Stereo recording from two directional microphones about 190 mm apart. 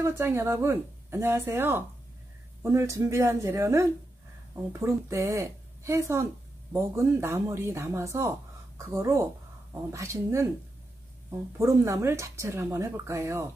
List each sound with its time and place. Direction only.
0.0 s speech: 15° right (ahead or behind)